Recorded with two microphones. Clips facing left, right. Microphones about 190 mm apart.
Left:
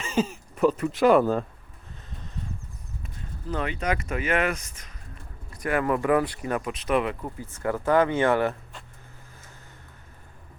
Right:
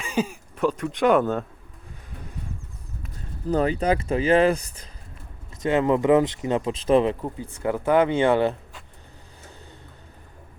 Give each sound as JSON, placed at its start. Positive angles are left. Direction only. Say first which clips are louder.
{"t": 0.0, "sound": "a sound", "louder": "even", "side_deg": 0}
{"t": 0.5, "sound": "speech", "louder": "left 2 dB", "side_deg": 5}
{"t": 3.5, "sound": "speech", "louder": "right 7 dB", "side_deg": -35}
{"t": 7.6, "sound": "speech", "louder": "right 2 dB", "side_deg": -15}